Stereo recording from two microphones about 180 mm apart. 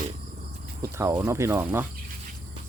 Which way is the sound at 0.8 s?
15° right (ahead or behind).